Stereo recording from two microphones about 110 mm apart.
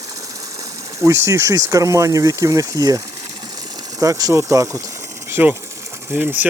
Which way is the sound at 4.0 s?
30° right (ahead or behind).